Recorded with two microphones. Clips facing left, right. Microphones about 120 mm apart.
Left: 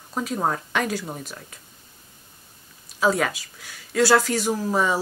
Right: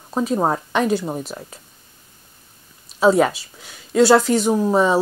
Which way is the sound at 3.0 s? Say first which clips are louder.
Right 7 dB; 25° right (ahead or behind).